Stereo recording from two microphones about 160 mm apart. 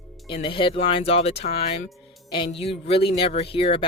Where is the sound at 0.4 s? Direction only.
30° left (ahead or behind).